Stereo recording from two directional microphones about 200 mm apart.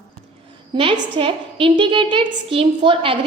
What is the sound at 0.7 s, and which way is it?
A woman's voice, 25° right (ahead or behind).